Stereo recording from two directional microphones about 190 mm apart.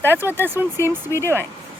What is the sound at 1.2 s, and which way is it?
Speech, 10° left (ahead or behind).